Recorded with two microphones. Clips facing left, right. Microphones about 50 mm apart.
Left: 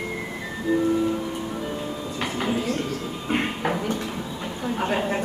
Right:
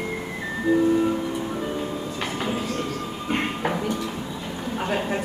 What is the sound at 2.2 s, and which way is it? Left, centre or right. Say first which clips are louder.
Train: left 3 dB; centre.